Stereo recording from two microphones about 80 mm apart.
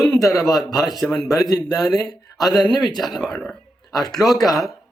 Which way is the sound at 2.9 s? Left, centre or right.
Centre.